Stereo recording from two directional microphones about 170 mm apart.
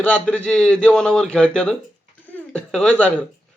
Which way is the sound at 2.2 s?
10° left (ahead or behind).